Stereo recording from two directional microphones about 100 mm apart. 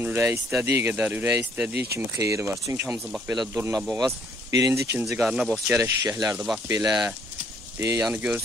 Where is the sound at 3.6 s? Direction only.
35° right (ahead or behind).